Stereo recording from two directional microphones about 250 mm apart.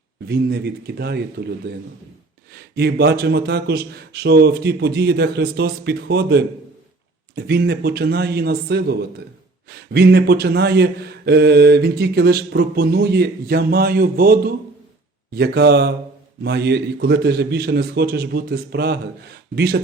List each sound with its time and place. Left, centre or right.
0.3 s speech: right